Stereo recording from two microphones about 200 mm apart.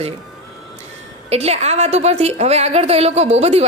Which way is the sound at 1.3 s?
30° right (ahead or behind).